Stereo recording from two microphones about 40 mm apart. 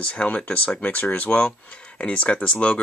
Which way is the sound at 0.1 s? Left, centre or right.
Left.